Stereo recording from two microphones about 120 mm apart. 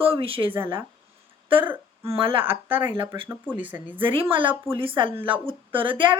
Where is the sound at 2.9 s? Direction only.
40° right (ahead or behind).